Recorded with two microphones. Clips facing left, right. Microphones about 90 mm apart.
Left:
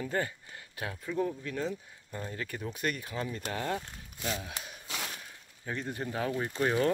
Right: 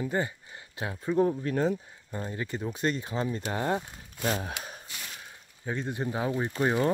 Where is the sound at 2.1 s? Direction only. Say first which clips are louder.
Right 4 dB; 25° right (ahead or behind).